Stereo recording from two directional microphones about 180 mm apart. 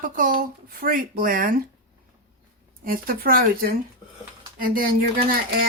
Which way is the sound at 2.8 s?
55° right (ahead or behind).